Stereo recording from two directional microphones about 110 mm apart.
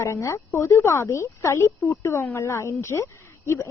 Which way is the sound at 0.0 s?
25° left (ahead or behind).